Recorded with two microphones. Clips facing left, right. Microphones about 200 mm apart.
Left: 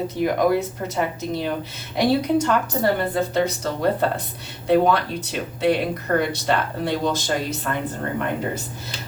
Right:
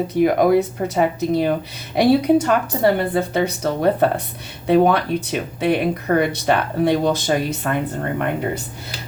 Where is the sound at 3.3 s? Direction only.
60° right (ahead or behind).